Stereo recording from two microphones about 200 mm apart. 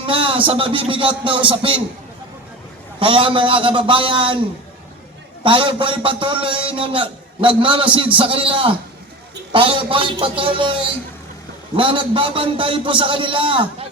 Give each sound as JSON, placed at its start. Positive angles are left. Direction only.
{"t": 0.0, "sound": "a man's voice", "side_deg": -25}
{"t": 3.0, "sound": "a man's voice", "side_deg": -25}
{"t": 5.4, "sound": "a man's voice", "side_deg": -25}